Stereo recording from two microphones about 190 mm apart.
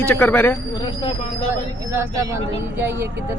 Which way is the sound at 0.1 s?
10° left (ahead or behind).